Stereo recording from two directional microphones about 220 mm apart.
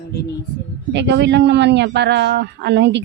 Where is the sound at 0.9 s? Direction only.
50° right (ahead or behind).